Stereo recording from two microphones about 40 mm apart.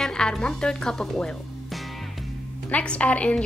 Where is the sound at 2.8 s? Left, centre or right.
Left.